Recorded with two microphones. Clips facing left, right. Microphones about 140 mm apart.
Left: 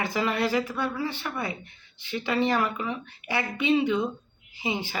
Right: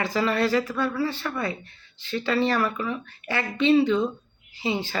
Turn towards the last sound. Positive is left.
turn(degrees=15)  # may be behind; listen again after turning